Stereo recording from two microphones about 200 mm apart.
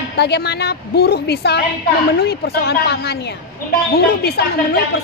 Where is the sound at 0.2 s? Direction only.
55° left (ahead or behind).